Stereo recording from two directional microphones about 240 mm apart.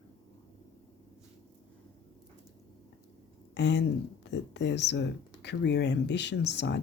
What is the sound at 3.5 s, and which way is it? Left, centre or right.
Speech, left.